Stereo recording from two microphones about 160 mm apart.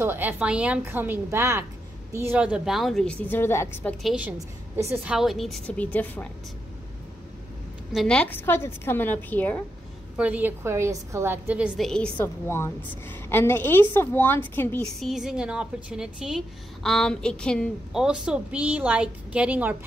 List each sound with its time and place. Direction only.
0.0 s a woman's voice: 10° right (ahead or behind); by 3.9 s 15° left (ahead or behind)
4.0 s a woman's voice: 5° right (ahead or behind); by 6.2 s 10° left (ahead or behind)
7.9 s a woman's voice: centre (ahead or behind)
10.1 s a woman's voice: 10° right (ahead or behind); by 14.9 s 10° left (ahead or behind)
15.0 s a woman's voice: centre (ahead or behind)